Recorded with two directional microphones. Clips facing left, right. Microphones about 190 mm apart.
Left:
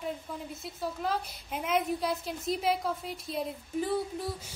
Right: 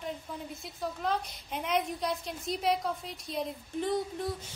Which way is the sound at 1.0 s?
5° left (ahead or behind).